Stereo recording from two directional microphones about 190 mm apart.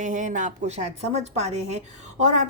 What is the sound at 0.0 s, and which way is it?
A woman's voice, 40° right (ahead or behind).